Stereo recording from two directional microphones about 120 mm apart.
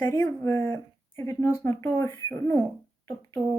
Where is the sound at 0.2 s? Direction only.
20° left (ahead or behind).